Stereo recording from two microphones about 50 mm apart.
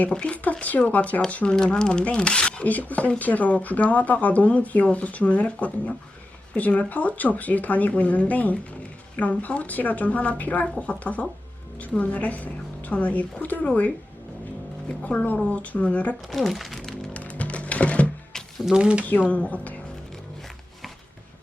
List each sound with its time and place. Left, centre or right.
0.1 s a woman's voice: left
0.9 s speech: left
1.5 s speech: centre
2.6 s a woman's voice: left
15.0 s a woman's voice: left
16.2 s speech: centre
17.2 s music: left
18.3 s a sound: centre
18.8 s speech: right
19.3 s a woman's voice: left